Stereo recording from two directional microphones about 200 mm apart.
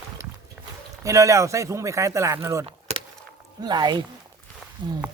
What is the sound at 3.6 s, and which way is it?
Speech, 20° right (ahead or behind).